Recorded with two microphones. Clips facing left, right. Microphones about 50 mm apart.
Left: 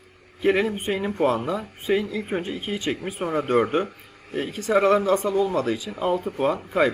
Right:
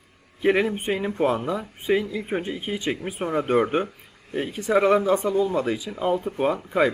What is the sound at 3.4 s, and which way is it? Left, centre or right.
Speech, centre.